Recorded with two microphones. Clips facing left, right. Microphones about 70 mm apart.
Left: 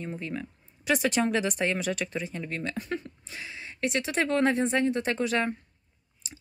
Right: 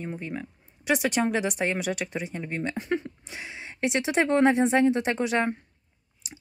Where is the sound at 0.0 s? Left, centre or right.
Centre.